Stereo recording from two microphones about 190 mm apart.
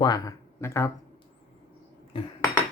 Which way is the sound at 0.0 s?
20° left (ahead or behind).